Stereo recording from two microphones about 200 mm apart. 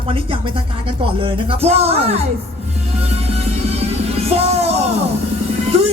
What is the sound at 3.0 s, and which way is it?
Music, 30° right (ahead or behind).